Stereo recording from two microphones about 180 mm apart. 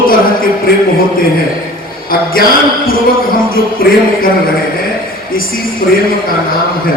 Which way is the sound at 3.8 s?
55° left (ahead or behind).